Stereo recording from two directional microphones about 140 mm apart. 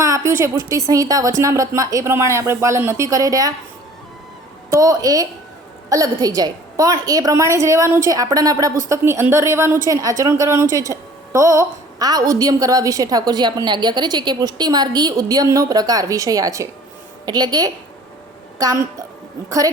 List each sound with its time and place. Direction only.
0.3 s a woman's voice: 20° right (ahead or behind)
4.7 s a woman's voice: 25° right (ahead or behind)